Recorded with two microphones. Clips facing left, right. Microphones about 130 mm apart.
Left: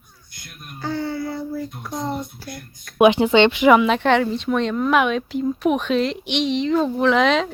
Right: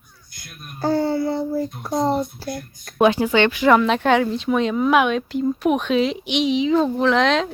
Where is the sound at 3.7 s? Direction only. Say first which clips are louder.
Even; centre (ahead or behind).